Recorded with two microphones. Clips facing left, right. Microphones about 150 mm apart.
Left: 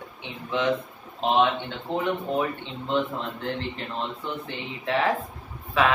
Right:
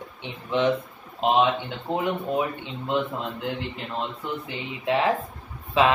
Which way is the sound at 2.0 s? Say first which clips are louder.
Even; 10° right (ahead or behind).